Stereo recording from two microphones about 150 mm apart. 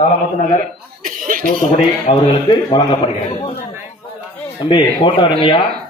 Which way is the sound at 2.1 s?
50° left (ahead or behind).